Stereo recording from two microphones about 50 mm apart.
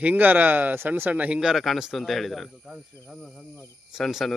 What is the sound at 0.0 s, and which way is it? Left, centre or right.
Speech, right.